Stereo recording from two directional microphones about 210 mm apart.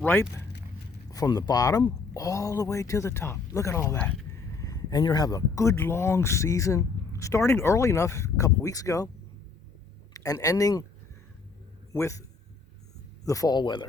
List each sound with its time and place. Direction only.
0.0 s speech: 10° left (ahead or behind)
10.2 s speech: 15° left (ahead or behind)
11.9 s a man's voice: 15° left (ahead or behind)
13.2 s speech: 15° left (ahead or behind)